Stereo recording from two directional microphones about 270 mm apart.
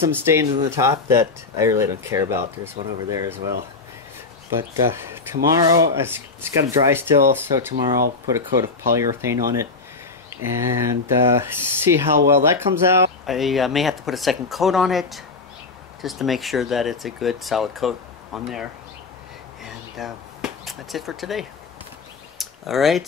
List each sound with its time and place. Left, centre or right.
0.0 s speech: centre
4.5 s speech: centre
8.9 s speech: centre
19.6 s a sound: centre